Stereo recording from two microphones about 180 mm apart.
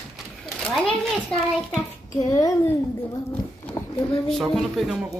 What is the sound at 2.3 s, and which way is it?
Speech, 20° left (ahead or behind).